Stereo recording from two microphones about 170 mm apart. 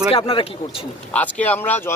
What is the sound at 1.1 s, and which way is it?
Speech, 10° left (ahead or behind).